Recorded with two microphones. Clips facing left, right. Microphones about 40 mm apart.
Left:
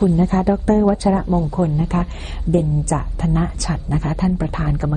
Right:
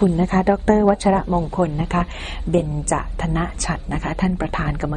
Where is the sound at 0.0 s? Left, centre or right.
Right.